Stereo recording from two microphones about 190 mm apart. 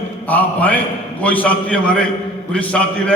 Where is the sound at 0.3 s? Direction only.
10° left (ahead or behind).